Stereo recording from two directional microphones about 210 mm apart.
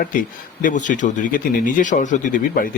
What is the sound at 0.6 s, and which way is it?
Speech, 35° left (ahead or behind).